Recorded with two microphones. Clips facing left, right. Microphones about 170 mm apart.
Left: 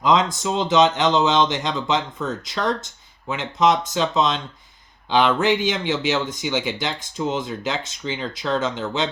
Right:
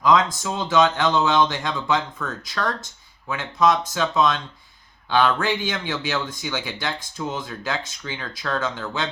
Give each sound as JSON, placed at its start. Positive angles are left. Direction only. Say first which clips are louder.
{"t": 0.0, "sound": "speech", "louder": "even", "side_deg": 20}